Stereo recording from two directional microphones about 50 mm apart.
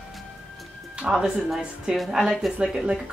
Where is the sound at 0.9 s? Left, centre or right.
Centre.